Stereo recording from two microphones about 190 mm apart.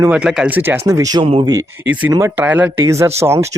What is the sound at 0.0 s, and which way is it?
Speech, 5° right (ahead or behind).